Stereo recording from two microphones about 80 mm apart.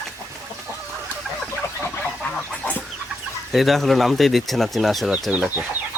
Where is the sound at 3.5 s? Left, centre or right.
Centre.